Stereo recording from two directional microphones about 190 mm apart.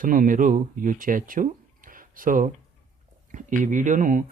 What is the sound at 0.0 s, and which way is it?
Speech, 45° right (ahead or behind).